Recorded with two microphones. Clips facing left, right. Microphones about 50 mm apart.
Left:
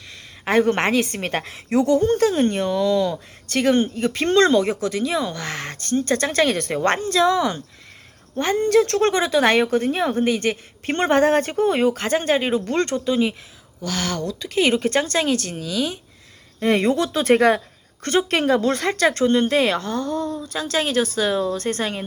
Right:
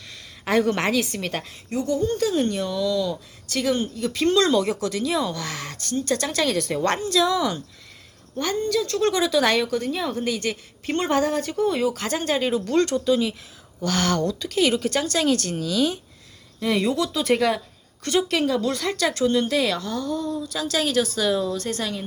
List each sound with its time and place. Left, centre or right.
0.4 s speech: left
1.5 s speech: left
2.1 s speech: left
4.5 s speech: left
8.5 s speech: left
12.0 s speech: left
13.8 s speech: centre
14.3 s speech: centre
14.6 s speech: left
15.5 s speech: centre
16.6 s speech: left
21.6 s speech: left